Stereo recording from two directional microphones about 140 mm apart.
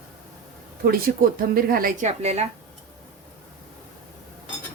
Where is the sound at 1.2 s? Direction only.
90° right.